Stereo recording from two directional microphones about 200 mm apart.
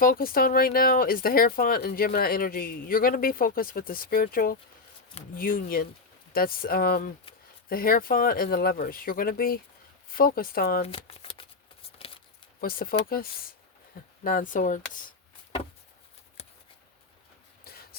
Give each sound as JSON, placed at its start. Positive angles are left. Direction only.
{"t": 0.0, "sound": "speech", "side_deg": 45}
{"t": 10.8, "sound": "shuffling cards", "side_deg": 30}
{"t": 12.5, "sound": "speech", "side_deg": 45}
{"t": 14.3, "sound": "speech", "side_deg": 40}